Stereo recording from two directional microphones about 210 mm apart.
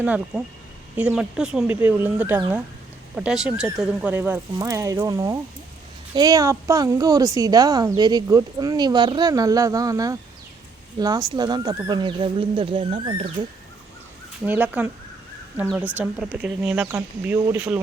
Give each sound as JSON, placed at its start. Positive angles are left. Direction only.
{"t": 0.0, "sound": "speech", "side_deg": -5}
{"t": 14.4, "sound": "speech", "side_deg": -10}